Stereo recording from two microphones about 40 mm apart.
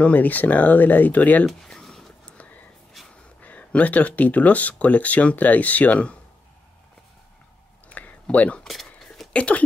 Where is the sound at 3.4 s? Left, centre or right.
Left.